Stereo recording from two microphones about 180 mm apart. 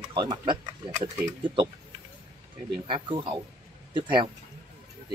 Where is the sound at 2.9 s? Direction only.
25° right (ahead or behind).